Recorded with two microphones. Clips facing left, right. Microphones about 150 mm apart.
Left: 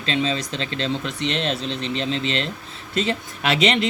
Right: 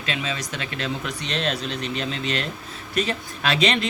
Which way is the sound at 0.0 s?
30° left (ahead or behind).